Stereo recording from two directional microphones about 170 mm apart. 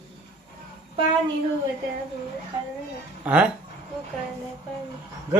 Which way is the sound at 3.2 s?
10° right (ahead or behind).